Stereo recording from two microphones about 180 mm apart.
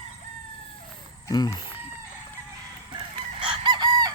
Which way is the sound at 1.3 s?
20° left (ahead or behind).